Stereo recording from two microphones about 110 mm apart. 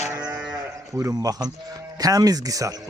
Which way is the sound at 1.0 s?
30° right (ahead or behind).